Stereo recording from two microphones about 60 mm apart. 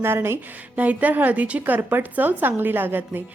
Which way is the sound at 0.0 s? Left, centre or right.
Right.